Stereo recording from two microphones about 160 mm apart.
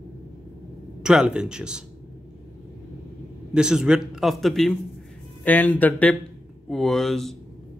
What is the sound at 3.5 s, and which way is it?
Speech, 5° right (ahead or behind).